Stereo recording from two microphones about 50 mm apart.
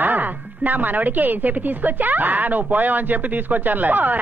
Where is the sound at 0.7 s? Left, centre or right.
Right.